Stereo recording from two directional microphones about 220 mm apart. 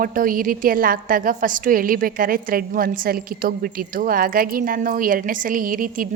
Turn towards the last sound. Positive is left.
turn(degrees=-40)  # may be behind; listen again after turning